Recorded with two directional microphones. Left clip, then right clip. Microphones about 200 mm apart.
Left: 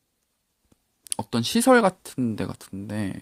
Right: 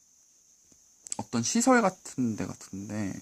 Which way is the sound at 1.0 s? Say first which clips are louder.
Left 5 dB; 20° left (ahead or behind).